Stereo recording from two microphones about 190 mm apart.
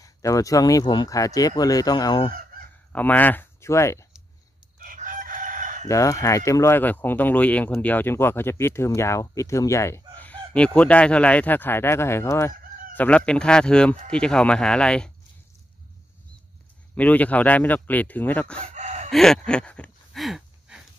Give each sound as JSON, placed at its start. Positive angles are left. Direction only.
{"t": 0.0, "sound": "speech", "side_deg": 15}
{"t": 2.9, "sound": "speech", "side_deg": 10}
{"t": 4.7, "sound": "crowing", "side_deg": -45}
{"t": 5.9, "sound": "speech", "side_deg": 15}
{"t": 12.9, "sound": "fowl", "side_deg": 10}
{"t": 16.9, "sound": "speech", "side_deg": 10}
{"t": 18.6, "sound": "chicken", "side_deg": -40}
{"t": 19.1, "sound": "a sound", "side_deg": 5}